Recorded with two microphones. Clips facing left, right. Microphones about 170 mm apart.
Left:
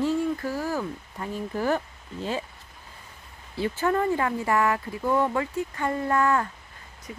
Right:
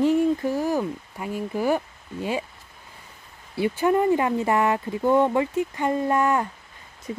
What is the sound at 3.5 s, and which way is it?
Speech, 15° right (ahead or behind).